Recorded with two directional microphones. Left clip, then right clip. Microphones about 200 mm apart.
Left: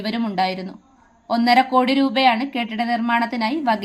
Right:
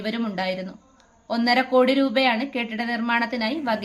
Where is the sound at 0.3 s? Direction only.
10° left (ahead or behind).